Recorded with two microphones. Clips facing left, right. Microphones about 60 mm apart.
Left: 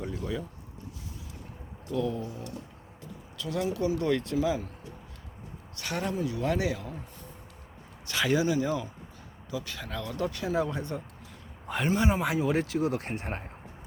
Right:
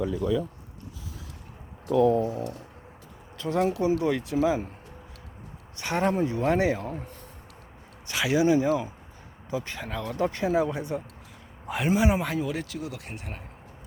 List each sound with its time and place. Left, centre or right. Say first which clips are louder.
1.9 s speech: right 10 dB; right
3.3 s speech: right 6 dB; right
3.8 s speech: right 3 dB; centre
4.4 s speech: right 4 dB; right
5.7 s speech: right 6 dB; right
8.0 s a sound: even; centre
8.4 s speech: right 5 dB; right
9.9 s speech: right 4 dB; centre
10.2 s speech: right 6 dB; right
10.6 s speech: right 3 dB; centre
12.2 s speech: left 1 dB; centre
12.5 s speech: left 5 dB; left